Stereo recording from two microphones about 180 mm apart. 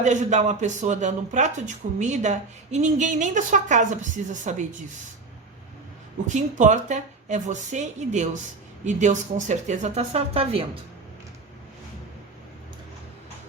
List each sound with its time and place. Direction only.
0.0 s speech: 40° right (ahead or behind)
6.3 s speech: 40° right (ahead or behind)